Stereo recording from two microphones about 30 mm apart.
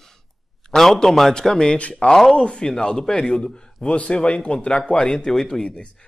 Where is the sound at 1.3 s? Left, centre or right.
Left.